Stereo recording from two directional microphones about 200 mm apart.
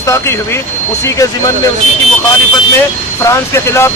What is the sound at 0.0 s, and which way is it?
Speech, 15° left (ahead or behind).